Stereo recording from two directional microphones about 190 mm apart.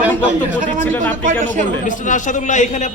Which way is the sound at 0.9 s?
10° left (ahead or behind).